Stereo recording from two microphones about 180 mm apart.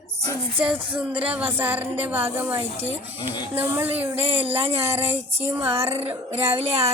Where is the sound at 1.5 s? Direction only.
10° right (ahead or behind).